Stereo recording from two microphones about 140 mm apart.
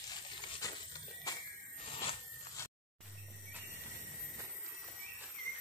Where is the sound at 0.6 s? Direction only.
25° left (ahead or behind).